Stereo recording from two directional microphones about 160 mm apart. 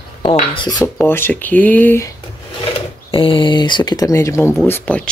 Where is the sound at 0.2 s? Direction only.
30° left (ahead or behind).